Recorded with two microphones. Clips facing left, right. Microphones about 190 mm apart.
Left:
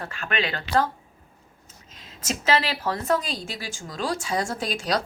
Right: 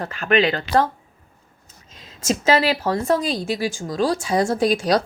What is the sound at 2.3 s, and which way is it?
A woman's voice, 30° right (ahead or behind).